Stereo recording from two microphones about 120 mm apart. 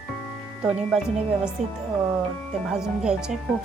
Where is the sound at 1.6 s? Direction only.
80° right.